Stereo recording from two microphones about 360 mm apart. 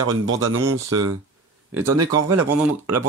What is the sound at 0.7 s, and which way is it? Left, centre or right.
Speech, right.